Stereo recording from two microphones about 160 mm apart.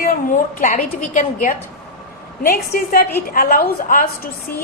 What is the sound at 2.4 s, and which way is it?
A woman's voice, 65° left (ahead or behind).